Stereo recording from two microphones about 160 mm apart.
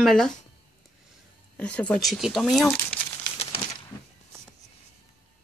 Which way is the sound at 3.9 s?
20° left (ahead or behind).